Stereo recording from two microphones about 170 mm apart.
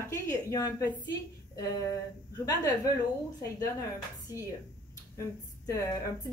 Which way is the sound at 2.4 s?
20° left (ahead or behind).